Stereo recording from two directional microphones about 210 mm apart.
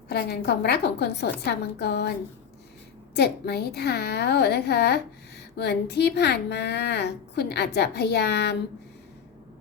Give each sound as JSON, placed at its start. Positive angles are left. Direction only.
{"t": 0.1, "sound": "a woman's voice", "side_deg": 50}
{"t": 3.2, "sound": "a woman's voice", "side_deg": 50}